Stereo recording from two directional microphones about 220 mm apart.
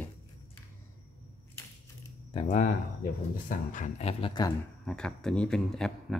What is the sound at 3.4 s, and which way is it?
Speech, 35° left (ahead or behind).